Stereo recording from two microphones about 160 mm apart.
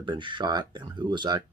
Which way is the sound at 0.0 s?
30° right (ahead or behind).